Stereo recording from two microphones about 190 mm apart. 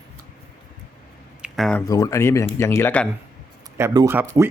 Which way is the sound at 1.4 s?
Centre (ahead or behind).